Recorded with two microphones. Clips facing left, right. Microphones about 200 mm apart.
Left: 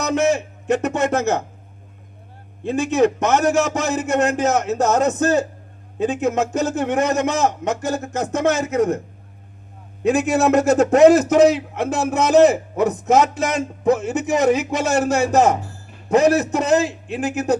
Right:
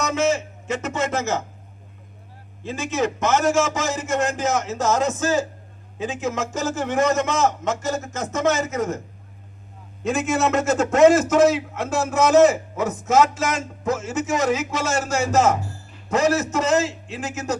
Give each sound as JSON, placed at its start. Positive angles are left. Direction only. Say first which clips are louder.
{"t": 0.0, "sound": "speech", "louder": "left 3 dB", "side_deg": 60}
{"t": 2.6, "sound": "a man's voice", "louder": "left 7 dB", "side_deg": 60}
{"t": 10.0, "sound": "a man's voice", "louder": "left 5 dB", "side_deg": 65}